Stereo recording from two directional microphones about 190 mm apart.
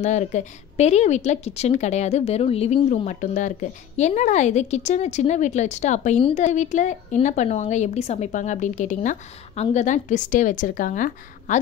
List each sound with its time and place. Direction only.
0.0 s a woman's voice: 40° left (ahead or behind)